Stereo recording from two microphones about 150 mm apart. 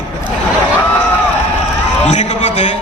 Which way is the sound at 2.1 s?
50° left (ahead or behind).